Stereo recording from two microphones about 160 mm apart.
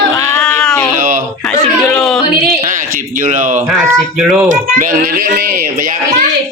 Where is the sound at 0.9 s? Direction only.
60° right (ahead or behind).